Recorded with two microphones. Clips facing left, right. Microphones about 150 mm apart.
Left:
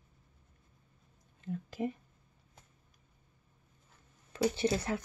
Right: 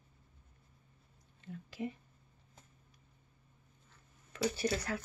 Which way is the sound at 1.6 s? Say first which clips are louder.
Left 4 dB; 45° left (ahead or behind).